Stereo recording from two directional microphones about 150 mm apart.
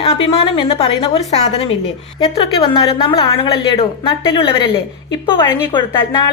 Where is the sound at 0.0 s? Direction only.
40° left (ahead or behind).